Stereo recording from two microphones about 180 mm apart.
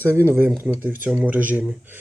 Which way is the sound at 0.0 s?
15° right (ahead or behind).